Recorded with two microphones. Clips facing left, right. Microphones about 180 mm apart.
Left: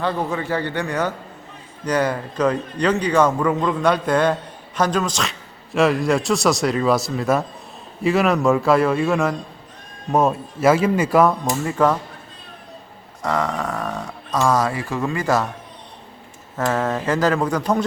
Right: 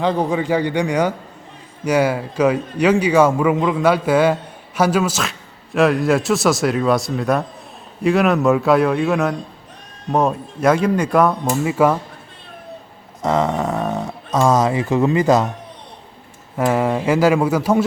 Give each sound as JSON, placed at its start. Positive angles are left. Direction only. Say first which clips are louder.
{"t": 0.0, "sound": "a man's voice", "louder": "right 5 dB", "side_deg": -15}
{"t": 13.2, "sound": "speech", "louder": "right 4 dB", "side_deg": -25}
{"t": 16.6, "sound": "a man's voice", "louder": "right 4 dB", "side_deg": -10}